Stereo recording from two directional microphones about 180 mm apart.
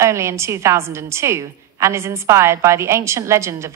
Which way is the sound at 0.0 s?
15° right (ahead or behind).